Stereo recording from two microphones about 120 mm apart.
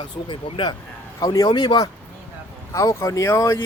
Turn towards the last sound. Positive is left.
turn(degrees=25)  # may be behind; listen again after turning